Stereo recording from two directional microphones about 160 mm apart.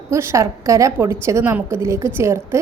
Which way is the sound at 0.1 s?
15° right (ahead or behind).